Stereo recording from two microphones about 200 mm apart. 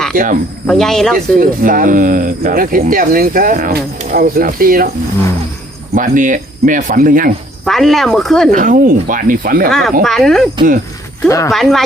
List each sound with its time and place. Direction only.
0.1 s speech: 45° right (ahead or behind)
0.7 s speech: centre (ahead or behind)
1.4 s speech: 45° right (ahead or behind)
5.9 s speech: 40° right (ahead or behind)
7.6 s speech: centre (ahead or behind)
8.4 s speech: 45° right (ahead or behind)
9.6 s speech: centre (ahead or behind)
11.3 s speech: 15° left (ahead or behind)
11.5 s speech: centre (ahead or behind)